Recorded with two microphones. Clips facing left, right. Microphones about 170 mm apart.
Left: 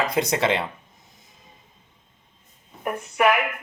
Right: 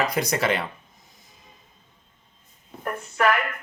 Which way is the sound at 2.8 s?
10° left (ahead or behind).